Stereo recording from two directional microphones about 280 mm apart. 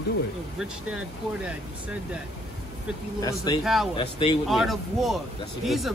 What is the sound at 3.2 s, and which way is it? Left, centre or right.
Speech, centre.